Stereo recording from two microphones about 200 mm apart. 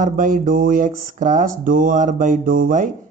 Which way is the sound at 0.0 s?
40° right (ahead or behind).